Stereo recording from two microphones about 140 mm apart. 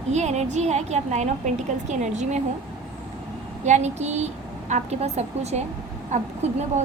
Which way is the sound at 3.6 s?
55° right (ahead or behind).